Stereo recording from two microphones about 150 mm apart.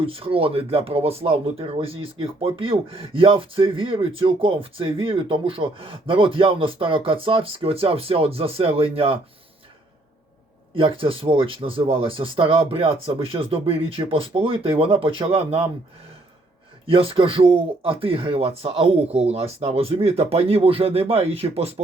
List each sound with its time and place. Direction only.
0.0 s speech: 35° right (ahead or behind)
10.8 s speech: 35° right (ahead or behind)
16.8 s speech: 40° right (ahead or behind)